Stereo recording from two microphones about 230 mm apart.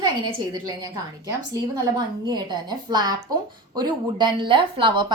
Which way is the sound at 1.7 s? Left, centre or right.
Centre.